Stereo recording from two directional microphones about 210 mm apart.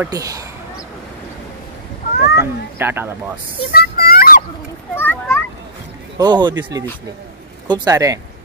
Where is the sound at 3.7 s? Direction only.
45° left (ahead or behind).